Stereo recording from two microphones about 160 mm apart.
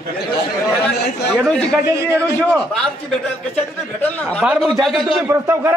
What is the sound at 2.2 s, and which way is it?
Speech, 15° left (ahead or behind).